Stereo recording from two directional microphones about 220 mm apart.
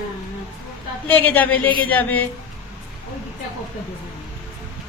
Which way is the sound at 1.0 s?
10° left (ahead or behind).